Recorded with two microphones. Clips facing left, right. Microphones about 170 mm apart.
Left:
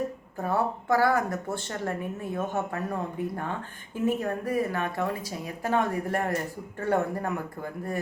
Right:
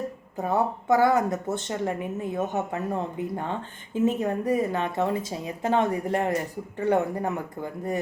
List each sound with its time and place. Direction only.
0.3 s speech: 20° right (ahead or behind)